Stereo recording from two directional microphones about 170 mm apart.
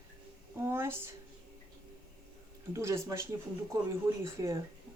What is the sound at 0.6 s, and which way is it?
Speech, 15° right (ahead or behind).